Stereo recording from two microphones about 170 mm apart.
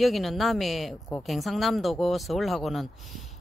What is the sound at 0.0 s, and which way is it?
Speech, centre (ahead or behind).